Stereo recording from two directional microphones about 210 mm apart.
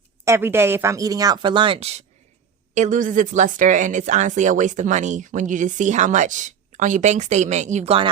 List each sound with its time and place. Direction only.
0.3 s speech: 10° right (ahead or behind)